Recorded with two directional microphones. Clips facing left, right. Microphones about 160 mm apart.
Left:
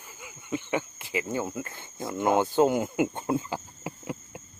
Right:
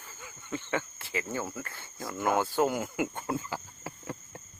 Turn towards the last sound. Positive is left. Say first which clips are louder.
# left 4 dB
turn(degrees=15)  # may be behind; listen again after turning